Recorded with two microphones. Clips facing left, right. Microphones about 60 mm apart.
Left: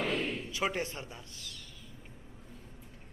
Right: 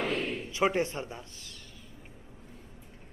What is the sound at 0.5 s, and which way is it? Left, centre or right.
A man's voice, right.